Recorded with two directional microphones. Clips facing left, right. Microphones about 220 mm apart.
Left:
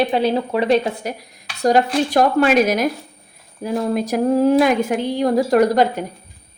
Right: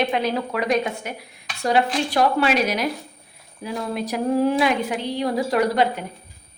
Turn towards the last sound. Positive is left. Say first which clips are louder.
# left 5 dB
turn(degrees=40)  # may be behind; listen again after turning